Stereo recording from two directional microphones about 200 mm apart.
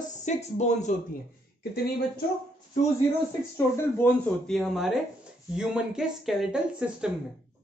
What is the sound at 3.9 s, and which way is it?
Speech, 5° left (ahead or behind).